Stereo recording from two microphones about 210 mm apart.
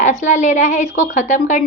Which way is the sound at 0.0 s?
35° left (ahead or behind).